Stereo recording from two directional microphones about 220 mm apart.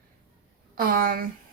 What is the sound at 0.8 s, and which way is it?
Speech, 40° right (ahead or behind).